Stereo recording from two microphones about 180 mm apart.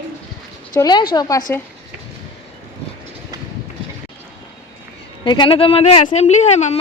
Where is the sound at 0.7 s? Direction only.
20° left (ahead or behind).